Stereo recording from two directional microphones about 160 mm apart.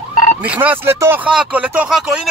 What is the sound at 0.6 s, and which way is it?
Speech, 15° right (ahead or behind).